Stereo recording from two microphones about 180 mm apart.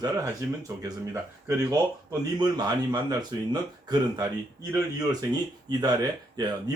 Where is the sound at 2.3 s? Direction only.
25° right (ahead or behind).